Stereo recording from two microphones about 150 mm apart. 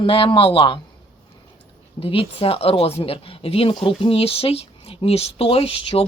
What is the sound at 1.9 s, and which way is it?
Speech, 40° left (ahead or behind).